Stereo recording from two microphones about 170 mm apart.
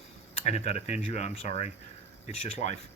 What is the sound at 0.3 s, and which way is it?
Speech, 40° left (ahead or behind).